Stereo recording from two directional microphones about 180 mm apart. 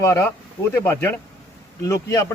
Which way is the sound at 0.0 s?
15° left (ahead or behind).